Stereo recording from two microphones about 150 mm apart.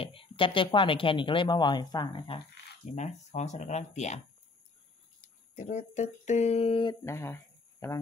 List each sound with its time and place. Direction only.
0.0 s speech: 35° left (ahead or behind)
2.9 s speech: 50° left (ahead or behind)
5.6 s speech: 50° left (ahead or behind); by 7.0 s 35° left (ahead or behind)
7.1 s speech: 15° left (ahead or behind)